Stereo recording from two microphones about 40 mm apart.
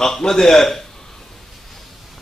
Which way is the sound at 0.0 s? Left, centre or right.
Centre.